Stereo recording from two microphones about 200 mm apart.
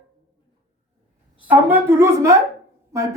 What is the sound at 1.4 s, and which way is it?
A man's voice, 10° right (ahead or behind).